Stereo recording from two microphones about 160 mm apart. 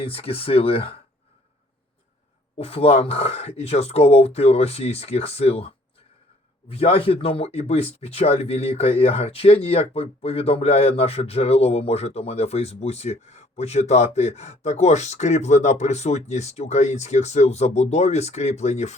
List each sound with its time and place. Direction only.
0.0 s speech: 35° left (ahead or behind)
2.6 s speech: 40° left (ahead or behind)